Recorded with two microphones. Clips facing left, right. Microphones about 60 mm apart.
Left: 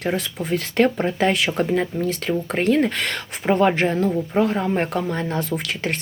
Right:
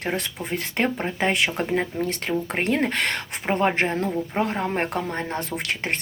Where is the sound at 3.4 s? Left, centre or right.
Centre.